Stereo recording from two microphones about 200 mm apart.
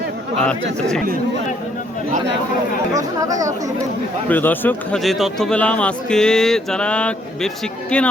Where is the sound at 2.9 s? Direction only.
15° right (ahead or behind).